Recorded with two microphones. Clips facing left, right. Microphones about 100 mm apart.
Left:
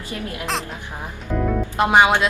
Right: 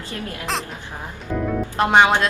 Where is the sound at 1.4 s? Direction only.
Centre (ahead or behind).